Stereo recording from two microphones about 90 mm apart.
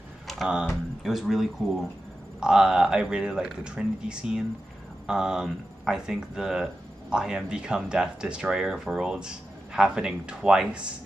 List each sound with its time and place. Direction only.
0.3 s speech: 5° right (ahead or behind)